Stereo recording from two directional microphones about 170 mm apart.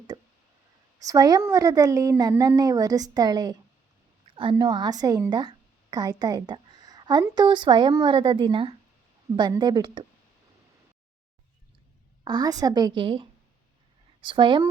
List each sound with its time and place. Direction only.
0.1 s a sound: 25° right (ahead or behind)
1.0 s a woman's voice: 20° right (ahead or behind)
12.2 s a woman's voice: 25° right (ahead or behind)